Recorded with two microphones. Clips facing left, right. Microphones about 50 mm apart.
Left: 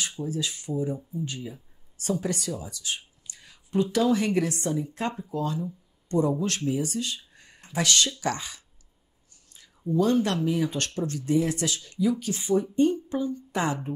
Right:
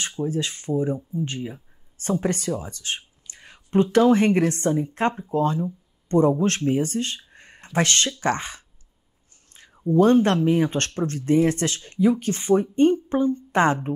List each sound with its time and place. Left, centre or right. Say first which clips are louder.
0.2 s a woman's voice: right 7 dB; right